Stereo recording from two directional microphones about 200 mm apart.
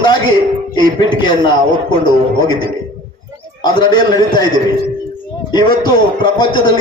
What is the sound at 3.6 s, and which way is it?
Speech, 20° left (ahead or behind).